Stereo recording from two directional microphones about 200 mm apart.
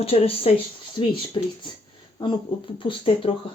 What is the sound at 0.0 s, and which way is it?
Speech, 30° left (ahead or behind).